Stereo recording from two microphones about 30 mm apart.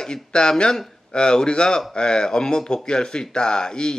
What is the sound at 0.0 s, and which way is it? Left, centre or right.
A man's voice, left.